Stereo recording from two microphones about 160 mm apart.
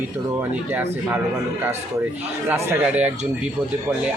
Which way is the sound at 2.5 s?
10° right (ahead or behind).